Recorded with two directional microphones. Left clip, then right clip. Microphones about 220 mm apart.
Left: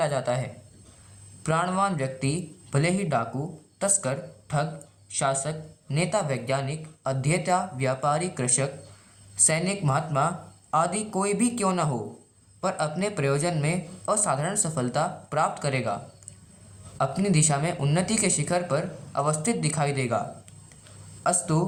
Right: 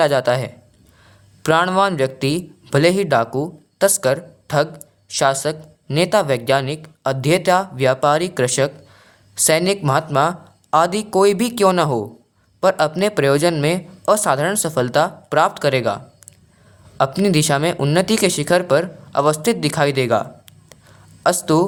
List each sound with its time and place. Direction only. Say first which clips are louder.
0.0 s speech: right 10 dB; 45° right (ahead or behind)
17.0 s speech: right 9 dB; 45° right (ahead or behind)
21.2 s speech: right 10 dB; 45° right (ahead or behind)